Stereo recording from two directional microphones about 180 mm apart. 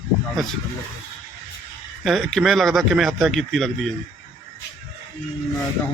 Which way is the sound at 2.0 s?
Centre (ahead or behind).